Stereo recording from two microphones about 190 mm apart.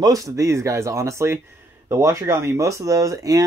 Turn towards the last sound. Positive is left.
turn(degrees=-20)  # may be behind; listen again after turning